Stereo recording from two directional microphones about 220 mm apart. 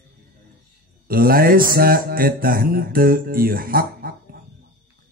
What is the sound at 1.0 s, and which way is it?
A man's voice, 40° right (ahead or behind).